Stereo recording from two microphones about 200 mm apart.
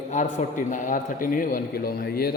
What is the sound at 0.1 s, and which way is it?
A man's voice, 35° left (ahead or behind).